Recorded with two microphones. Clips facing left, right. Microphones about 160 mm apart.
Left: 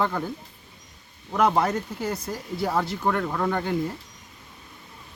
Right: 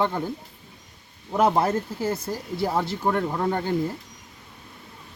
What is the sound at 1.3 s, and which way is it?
Speech, 25° right (ahead or behind).